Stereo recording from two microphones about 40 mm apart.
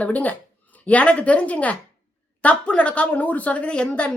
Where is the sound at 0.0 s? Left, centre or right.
Left.